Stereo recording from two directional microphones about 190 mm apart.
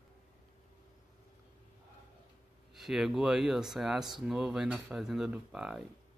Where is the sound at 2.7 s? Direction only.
Centre (ahead or behind).